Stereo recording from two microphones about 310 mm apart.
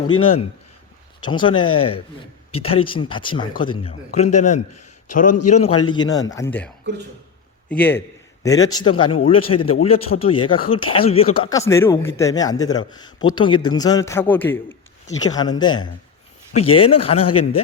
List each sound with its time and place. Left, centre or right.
0.2 s a man's voice: centre
5.9 s speech: centre
7.7 s a man's voice: centre